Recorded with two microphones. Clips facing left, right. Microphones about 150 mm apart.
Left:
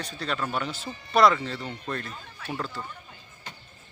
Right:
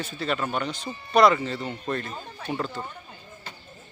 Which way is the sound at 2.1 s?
35° right (ahead or behind).